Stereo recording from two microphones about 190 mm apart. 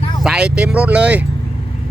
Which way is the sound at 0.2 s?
Centre (ahead or behind).